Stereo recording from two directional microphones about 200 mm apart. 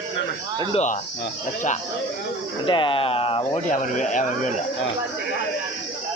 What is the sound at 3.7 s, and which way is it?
Speech, 40° left (ahead or behind).